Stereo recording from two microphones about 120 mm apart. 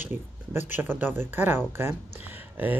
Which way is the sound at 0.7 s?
15° right (ahead or behind).